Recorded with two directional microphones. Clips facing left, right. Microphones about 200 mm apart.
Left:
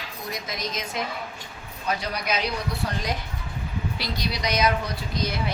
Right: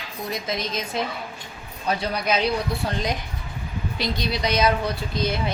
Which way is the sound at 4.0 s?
25° right (ahead or behind).